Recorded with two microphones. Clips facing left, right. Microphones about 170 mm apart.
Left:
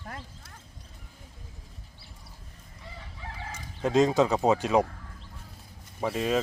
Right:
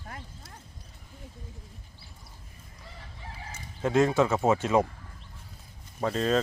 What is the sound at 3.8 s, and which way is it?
Speech, 20° left (ahead or behind).